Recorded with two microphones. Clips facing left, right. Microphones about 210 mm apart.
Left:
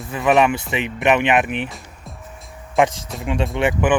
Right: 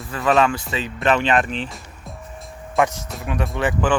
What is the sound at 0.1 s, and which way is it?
Speech, 20° left (ahead or behind).